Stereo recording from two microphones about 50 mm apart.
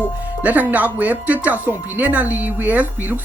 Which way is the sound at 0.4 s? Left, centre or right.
Right.